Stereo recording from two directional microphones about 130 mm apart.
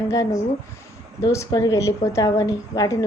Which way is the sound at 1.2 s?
25° left (ahead or behind).